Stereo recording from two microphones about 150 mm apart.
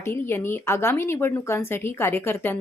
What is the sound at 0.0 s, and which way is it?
Speech, 15° left (ahead or behind).